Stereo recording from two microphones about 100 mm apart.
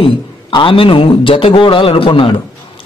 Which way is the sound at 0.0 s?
60° left (ahead or behind).